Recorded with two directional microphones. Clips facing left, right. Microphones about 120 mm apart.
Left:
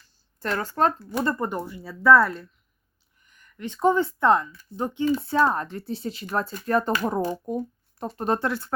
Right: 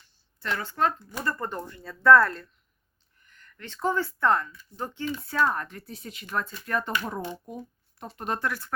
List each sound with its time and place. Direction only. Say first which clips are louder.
0.3 s speech: left 4 dB; 45° left (ahead or behind)
1.1 s a woman's voice: left 6 dB; 25° left (ahead or behind)
5.0 s speech: left 5 dB; 30° left (ahead or behind)